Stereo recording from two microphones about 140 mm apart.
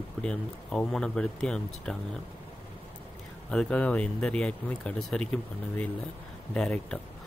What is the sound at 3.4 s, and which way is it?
Speech, 5° left (ahead or behind).